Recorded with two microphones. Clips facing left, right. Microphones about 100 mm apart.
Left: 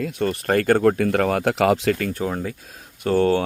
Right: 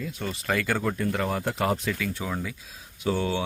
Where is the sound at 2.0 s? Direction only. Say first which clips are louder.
Left 6 dB; 45° left (ahead or behind).